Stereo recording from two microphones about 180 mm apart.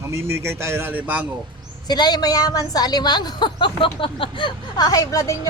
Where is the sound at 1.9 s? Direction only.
25° left (ahead or behind).